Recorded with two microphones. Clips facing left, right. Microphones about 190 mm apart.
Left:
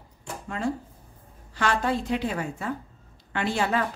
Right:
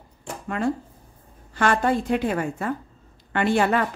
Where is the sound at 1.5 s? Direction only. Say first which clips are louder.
Right 4 dB; 50° right (ahead or behind).